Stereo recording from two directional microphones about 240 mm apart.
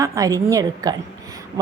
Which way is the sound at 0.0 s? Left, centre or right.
Centre.